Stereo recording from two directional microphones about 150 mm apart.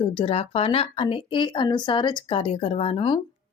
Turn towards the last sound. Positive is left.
turn(degrees=35)  # may be behind; listen again after turning